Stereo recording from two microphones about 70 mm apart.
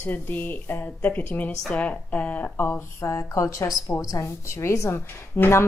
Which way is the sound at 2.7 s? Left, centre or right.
Left.